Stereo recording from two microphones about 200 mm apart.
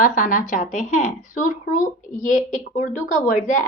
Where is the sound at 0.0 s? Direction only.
40° left (ahead or behind).